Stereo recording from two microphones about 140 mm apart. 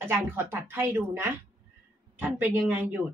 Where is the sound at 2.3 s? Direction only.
15° right (ahead or behind).